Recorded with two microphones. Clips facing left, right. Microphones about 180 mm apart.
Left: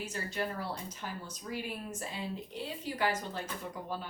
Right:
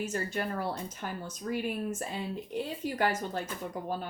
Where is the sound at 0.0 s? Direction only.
50° right (ahead or behind).